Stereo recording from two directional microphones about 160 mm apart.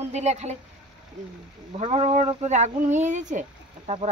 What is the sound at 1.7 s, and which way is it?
Speech, 40° right (ahead or behind).